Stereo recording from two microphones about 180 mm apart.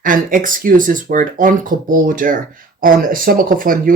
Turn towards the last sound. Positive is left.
turn(degrees=-50)  # may be behind; listen again after turning